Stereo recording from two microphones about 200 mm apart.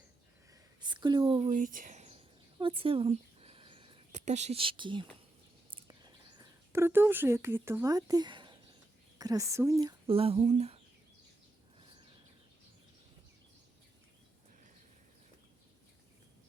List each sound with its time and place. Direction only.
0.5 s a sound: 20° right (ahead or behind)
5.7 s whispering: 20° right (ahead or behind)
9.1 s speech: 20° right (ahead or behind)
10.1 s speech: 30° right (ahead or behind)